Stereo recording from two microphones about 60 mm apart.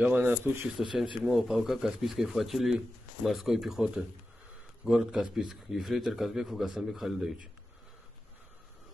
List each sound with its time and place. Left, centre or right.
0.0 s speech: right
0.7 s a man's voice: centre